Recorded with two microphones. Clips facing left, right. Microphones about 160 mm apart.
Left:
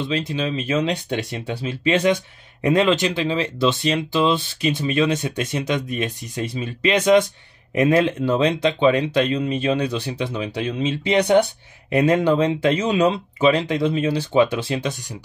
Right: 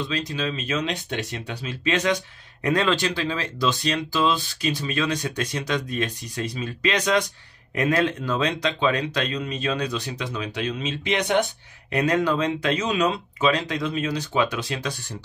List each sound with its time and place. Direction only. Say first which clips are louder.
0.1 s speech: left 4 dB; 25° left (ahead or behind)